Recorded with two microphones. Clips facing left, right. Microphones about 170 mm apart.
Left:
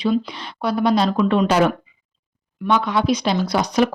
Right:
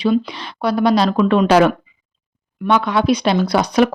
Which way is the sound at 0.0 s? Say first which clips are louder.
Right 3 dB; 75° right (ahead or behind).